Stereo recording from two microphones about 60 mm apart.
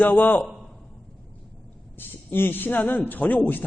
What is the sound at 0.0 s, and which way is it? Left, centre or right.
Speech, left.